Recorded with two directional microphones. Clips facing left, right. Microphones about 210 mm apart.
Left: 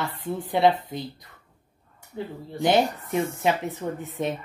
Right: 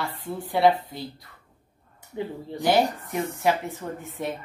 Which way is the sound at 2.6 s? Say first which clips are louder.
Left 1 dB; 20° left (ahead or behind).